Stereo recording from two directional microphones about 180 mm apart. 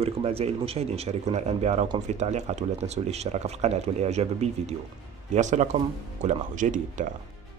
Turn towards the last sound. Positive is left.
turn(degrees=-45)  # may be behind; listen again after turning